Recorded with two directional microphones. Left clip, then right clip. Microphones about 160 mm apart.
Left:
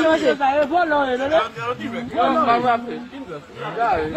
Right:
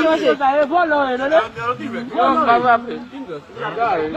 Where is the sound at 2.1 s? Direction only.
85° left.